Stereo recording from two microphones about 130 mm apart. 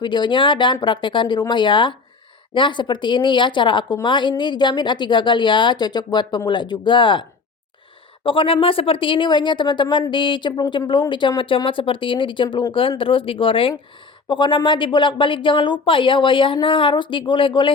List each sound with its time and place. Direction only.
0.0 s a woman's voice: 35° left (ahead or behind)